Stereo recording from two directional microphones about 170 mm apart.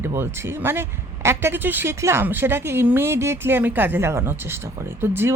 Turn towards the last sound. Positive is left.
turn(degrees=-15)  # may be behind; listen again after turning